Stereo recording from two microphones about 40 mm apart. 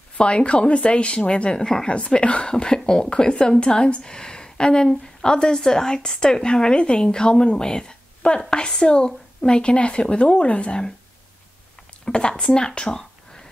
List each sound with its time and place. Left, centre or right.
0.2 s a woman's voice: left
12.0 s speech: left